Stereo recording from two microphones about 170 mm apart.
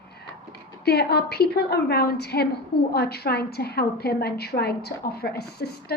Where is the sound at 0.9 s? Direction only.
70° left (ahead or behind).